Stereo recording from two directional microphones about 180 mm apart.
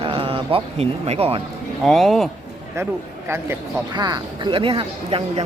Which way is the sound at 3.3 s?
20° right (ahead or behind).